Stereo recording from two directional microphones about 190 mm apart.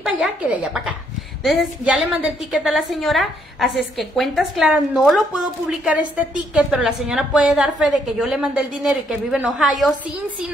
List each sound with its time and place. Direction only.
0.0 s a woman's voice: 5° right (ahead or behind)